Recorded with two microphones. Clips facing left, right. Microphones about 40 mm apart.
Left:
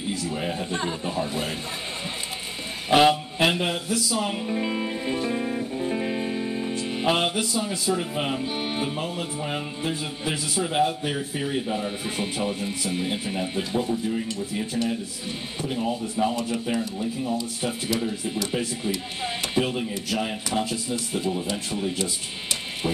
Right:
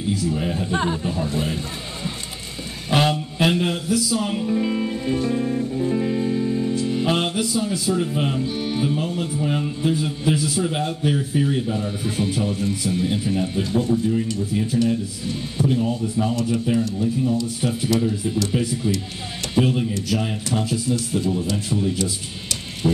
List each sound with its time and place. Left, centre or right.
0.3 s speech: centre
0.7 s a man's voice: centre
1.0 s speech: centre
2.9 s music: centre
7.1 s speech: centre